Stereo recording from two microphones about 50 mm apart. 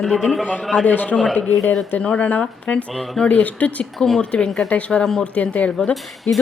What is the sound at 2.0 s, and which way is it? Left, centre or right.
Speech, left.